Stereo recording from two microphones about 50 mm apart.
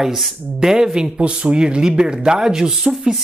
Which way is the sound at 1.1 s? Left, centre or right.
Right.